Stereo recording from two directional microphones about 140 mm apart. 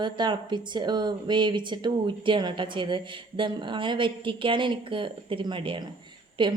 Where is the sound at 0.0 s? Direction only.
35° right (ahead or behind).